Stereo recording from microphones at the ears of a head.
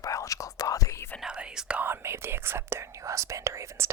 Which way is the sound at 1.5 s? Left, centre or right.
Right.